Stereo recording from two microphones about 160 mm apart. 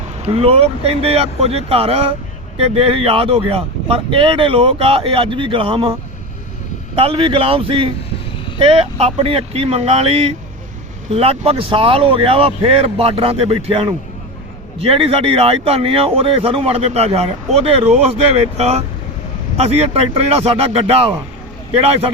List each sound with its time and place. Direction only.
0.3 s speech: 35° right (ahead or behind)